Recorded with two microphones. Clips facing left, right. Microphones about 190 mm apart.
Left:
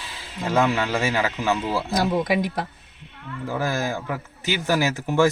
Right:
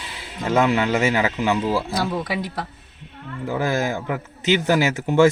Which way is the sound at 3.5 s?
20° right (ahead or behind).